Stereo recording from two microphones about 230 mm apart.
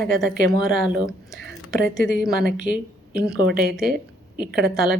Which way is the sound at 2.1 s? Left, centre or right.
Centre.